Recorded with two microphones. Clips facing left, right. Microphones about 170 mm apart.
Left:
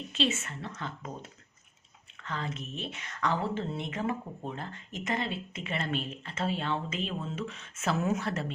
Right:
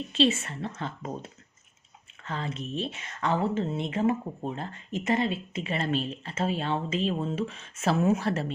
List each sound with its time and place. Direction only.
0.2 s a woman's voice: 35° right (ahead or behind)